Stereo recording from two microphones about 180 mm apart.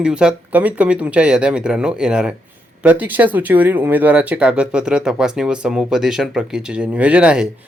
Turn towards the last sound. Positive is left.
turn(degrees=-5)  # may be behind; listen again after turning